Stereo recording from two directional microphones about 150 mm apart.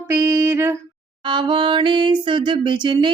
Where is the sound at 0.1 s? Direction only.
20° right (ahead or behind).